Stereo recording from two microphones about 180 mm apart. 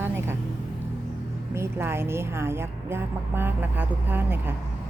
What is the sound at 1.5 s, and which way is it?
A woman's voice, 15° right (ahead or behind).